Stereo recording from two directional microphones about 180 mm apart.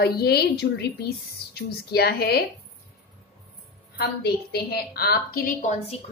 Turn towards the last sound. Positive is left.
turn(degrees=50)  # may be behind; listen again after turning